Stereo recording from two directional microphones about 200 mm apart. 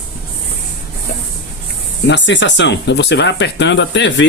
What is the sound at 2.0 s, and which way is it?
Speech, 65° left (ahead or behind).